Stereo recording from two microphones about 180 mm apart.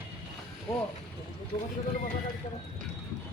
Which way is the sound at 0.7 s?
15° left (ahead or behind).